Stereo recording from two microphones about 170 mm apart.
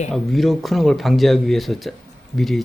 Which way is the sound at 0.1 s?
Centre (ahead or behind).